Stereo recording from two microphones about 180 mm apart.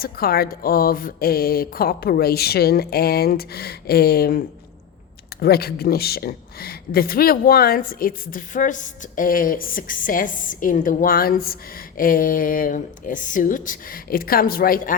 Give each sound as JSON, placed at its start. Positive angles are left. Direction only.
{"t": 0.0, "sound": "speech", "side_deg": 55}